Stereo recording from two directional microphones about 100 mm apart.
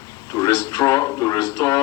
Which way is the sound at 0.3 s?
35° left (ahead or behind).